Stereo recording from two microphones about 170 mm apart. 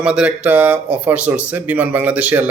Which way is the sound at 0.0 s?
5° right (ahead or behind).